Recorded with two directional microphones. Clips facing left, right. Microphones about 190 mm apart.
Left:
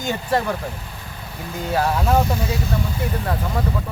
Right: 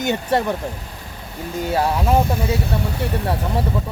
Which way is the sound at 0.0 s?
20° right (ahead or behind).